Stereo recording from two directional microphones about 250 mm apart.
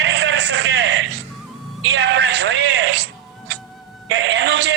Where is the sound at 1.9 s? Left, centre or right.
Right.